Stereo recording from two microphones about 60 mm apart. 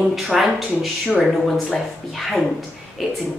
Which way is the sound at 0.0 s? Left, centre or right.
Centre.